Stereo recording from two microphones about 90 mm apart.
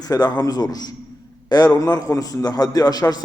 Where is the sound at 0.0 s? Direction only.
45° left (ahead or behind).